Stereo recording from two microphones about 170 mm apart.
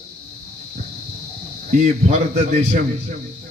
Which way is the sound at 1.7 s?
50° right (ahead or behind).